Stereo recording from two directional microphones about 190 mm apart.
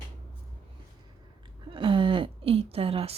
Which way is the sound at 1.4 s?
25° right (ahead or behind).